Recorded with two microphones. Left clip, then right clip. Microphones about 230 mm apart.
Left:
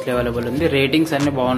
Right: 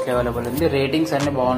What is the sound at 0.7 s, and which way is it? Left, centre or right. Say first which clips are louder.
Speech: left 3 dB; left.